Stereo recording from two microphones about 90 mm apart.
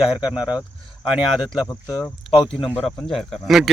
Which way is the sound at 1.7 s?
35° left (ahead or behind).